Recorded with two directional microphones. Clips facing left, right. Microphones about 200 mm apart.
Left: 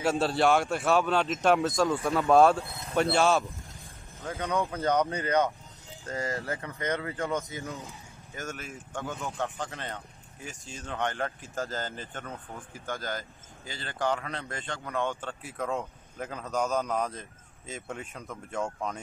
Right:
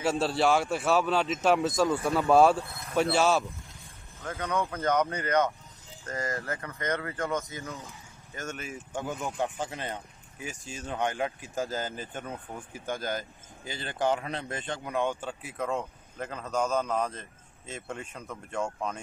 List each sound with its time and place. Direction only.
0.0 s a man's voice: centre (ahead or behind)
4.2 s speech: 15° left (ahead or behind)
8.4 s a man's voice: centre (ahead or behind)
8.9 s a man's voice: 15° right (ahead or behind); by 18.9 s centre (ahead or behind)